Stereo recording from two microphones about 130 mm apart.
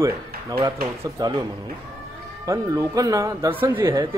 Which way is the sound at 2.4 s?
25° right (ahead or behind).